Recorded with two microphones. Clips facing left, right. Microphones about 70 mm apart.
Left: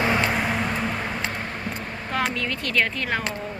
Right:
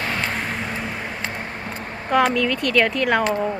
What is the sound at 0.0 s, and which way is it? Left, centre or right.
Vehicle, centre.